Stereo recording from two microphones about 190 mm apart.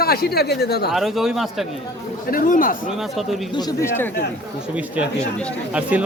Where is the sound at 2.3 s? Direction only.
45° left (ahead or behind).